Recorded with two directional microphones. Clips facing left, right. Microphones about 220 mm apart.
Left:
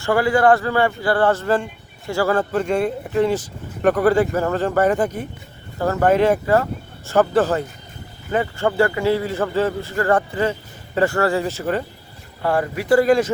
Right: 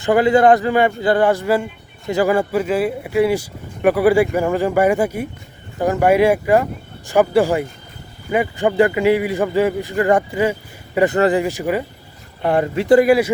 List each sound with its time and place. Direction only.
0.0 s a man's voice: 20° right (ahead or behind)
12.4 s speech: 20° right (ahead or behind)
13.1 s a man's voice: 10° right (ahead or behind)